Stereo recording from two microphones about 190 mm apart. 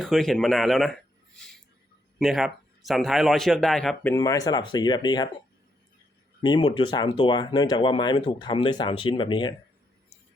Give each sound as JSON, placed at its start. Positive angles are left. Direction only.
{"t": 0.0, "sound": "a man's voice", "side_deg": 0}
{"t": 4.1, "sound": "speech", "side_deg": 15}
{"t": 6.4, "sound": "speech", "side_deg": 25}